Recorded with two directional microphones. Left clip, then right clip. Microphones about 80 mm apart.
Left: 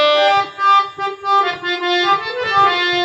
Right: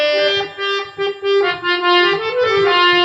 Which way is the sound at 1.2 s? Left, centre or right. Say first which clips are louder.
Left 1 dB; right.